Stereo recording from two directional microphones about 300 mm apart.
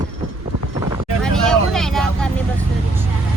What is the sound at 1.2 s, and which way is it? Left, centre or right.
Vehicle, centre.